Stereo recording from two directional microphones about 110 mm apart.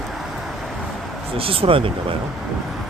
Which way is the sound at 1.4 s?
55° right (ahead or behind).